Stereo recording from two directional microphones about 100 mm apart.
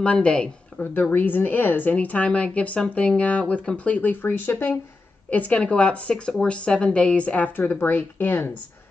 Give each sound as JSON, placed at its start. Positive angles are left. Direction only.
{"t": 0.0, "sound": "a woman's voice", "side_deg": 10}